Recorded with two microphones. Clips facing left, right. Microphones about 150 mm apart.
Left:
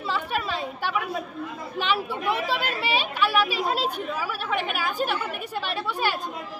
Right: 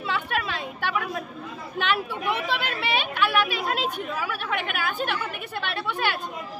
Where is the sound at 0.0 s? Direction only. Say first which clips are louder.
Even; centre (ahead or behind).